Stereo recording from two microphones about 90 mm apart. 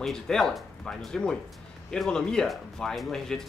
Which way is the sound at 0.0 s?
5° left (ahead or behind).